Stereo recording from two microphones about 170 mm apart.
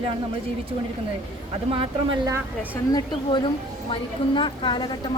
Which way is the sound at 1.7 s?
30° right (ahead or behind).